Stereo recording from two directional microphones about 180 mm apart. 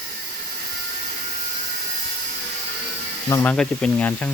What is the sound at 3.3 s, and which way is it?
Speech, 10° left (ahead or behind).